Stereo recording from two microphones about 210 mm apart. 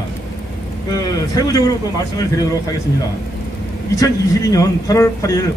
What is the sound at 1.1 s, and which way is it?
Speech, 15° left (ahead or behind).